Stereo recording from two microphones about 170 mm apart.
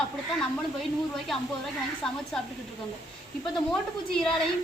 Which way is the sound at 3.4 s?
5° left (ahead or behind).